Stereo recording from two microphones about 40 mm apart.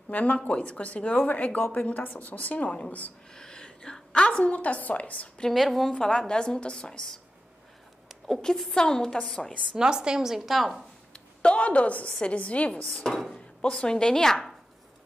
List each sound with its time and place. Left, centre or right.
0.1 s a woman's voice: left
3.3 s a woman's voice: centre; by 5.3 s left
5.5 s a woman's voice: centre
5.9 s a woman's voice: left
8.3 s a woman's voice: centre
9.8 s a woman's voice: centre
11.1 s a sound: left
12.1 s a woman's voice: left
13.0 s a woman's voice: centre
13.6 s a woman's voice: left